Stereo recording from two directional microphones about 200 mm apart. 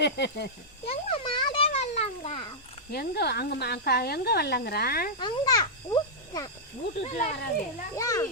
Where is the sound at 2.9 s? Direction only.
50° left (ahead or behind).